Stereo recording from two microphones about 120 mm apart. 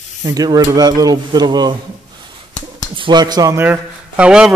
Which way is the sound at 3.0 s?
40° right (ahead or behind).